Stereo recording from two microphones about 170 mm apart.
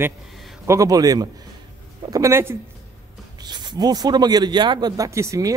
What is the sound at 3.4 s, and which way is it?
A man's voice, 25° right (ahead or behind).